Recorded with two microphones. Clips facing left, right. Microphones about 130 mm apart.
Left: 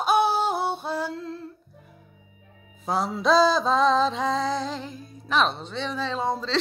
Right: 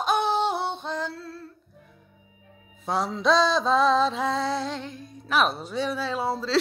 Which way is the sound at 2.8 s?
Centre (ahead or behind).